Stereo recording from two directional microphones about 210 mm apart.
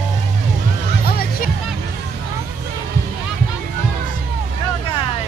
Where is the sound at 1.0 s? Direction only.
45° left (ahead or behind).